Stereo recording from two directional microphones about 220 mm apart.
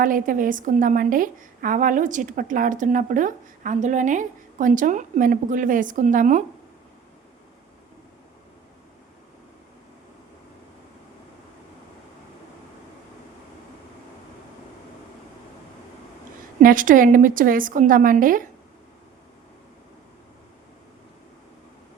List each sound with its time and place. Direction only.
0.0 s a woman's voice: 40° right (ahead or behind)
16.6 s a woman's voice: 35° right (ahead or behind)